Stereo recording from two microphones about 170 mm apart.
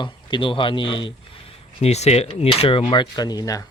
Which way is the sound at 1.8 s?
40° left (ahead or behind).